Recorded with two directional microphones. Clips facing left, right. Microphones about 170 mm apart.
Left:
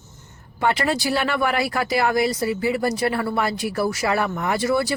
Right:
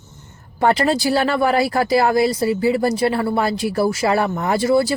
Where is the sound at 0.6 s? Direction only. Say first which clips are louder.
Right 5 dB; 35° right (ahead or behind).